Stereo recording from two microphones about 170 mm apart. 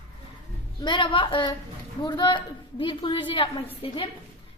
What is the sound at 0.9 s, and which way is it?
A woman's voice, 30° left (ahead or behind).